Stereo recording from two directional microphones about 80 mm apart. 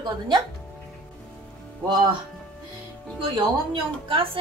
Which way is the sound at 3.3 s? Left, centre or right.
Right.